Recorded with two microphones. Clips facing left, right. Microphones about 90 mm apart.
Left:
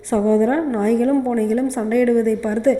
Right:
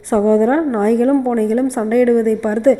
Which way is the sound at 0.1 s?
55° right (ahead or behind).